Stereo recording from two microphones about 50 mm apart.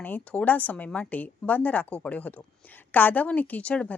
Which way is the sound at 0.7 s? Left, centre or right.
Left.